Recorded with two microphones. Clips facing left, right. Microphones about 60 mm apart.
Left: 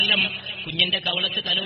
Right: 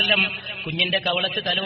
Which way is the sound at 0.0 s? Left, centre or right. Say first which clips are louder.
Right 2 dB; right.